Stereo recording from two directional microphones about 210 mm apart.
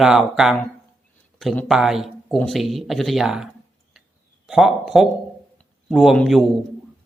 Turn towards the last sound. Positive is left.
turn(degrees=0)  # may be behind; listen again after turning